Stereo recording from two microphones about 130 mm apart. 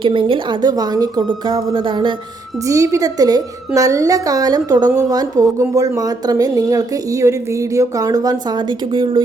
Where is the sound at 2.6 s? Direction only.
25° right (ahead or behind).